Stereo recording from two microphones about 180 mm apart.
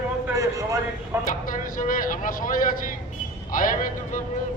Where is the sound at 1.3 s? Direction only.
50° left (ahead or behind).